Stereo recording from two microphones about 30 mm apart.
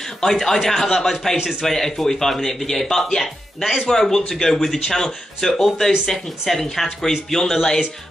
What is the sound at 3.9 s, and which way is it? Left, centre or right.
A man's voice, centre.